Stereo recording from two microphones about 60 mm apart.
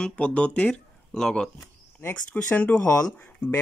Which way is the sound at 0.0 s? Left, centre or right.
Centre.